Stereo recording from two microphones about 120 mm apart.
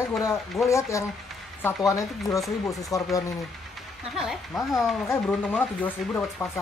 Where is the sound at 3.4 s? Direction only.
Centre (ahead or behind).